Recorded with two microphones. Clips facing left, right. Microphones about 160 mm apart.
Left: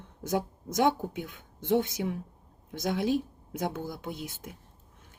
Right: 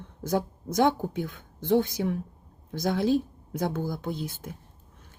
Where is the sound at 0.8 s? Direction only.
15° left (ahead or behind).